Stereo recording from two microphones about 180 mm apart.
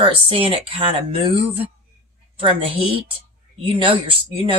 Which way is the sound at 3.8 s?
30° right (ahead or behind).